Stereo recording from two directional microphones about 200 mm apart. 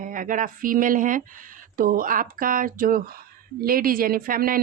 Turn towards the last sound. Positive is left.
turn(degrees=-45)  # may be behind; listen again after turning